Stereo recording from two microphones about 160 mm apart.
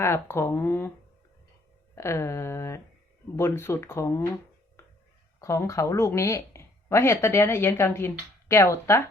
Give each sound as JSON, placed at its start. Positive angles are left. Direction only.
{"t": 0.0, "sound": "speech", "side_deg": 15}
{"t": 2.0, "sound": "speech", "side_deg": 15}
{"t": 5.4, "sound": "speech", "side_deg": 20}